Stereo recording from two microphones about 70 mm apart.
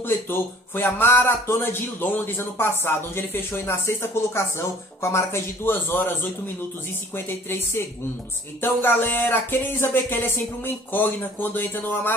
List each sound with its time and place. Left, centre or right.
0.0 s speech: left